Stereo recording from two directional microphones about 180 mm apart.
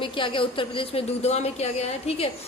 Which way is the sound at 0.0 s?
30° left (ahead or behind).